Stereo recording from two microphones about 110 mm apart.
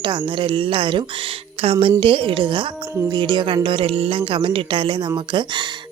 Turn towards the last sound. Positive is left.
turn(degrees=-45)  # may be behind; listen again after turning